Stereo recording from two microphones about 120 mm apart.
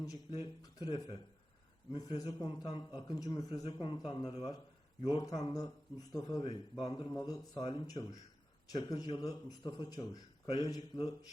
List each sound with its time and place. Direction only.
0.0 s a sound: 30° left (ahead or behind)
0.6 s a man's voice: 35° left (ahead or behind)
3.6 s a man's voice: 45° left (ahead or behind)